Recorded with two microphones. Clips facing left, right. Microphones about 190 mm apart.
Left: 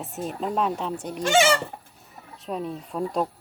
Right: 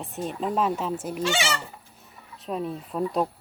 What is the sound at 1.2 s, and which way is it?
Speech, 50° left (ahead or behind).